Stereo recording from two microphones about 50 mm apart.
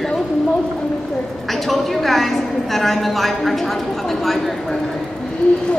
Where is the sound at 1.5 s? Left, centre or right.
Centre.